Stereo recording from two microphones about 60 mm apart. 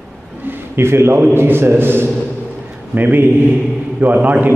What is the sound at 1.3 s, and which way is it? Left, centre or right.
A man's voice, right.